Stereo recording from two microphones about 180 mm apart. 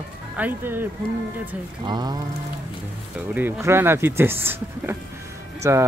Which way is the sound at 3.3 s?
10° right (ahead or behind).